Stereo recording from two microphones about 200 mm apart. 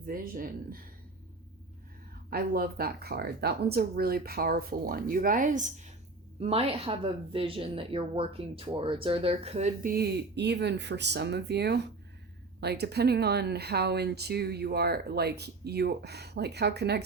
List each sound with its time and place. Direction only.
0.0 s speech: 45° right (ahead or behind)
2.3 s speech: 50° right (ahead or behind); by 9.9 s 35° right (ahead or behind)
9.9 s speech: 55° right (ahead or behind)